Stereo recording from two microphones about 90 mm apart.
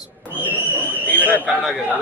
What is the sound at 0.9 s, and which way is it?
Speech, 20° left (ahead or behind).